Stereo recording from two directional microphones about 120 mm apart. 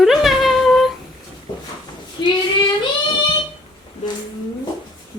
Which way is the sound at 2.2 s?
40° left (ahead or behind).